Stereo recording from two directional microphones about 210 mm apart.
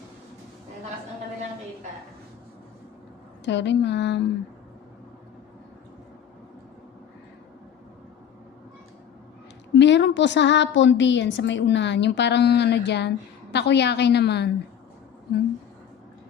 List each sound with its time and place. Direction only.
3.4 s a woman's voice: 55° left (ahead or behind)
9.7 s a woman's voice: 55° left (ahead or behind)